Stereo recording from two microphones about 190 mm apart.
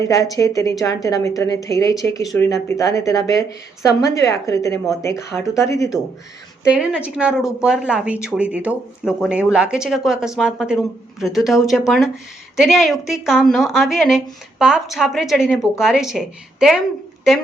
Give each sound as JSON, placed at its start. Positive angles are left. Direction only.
{"t": 0.0, "sound": "speech", "side_deg": 15}
{"t": 6.7, "sound": "speech", "side_deg": -5}